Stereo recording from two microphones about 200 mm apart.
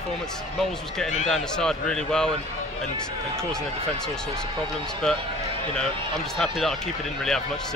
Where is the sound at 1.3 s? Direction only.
5° left (ahead or behind).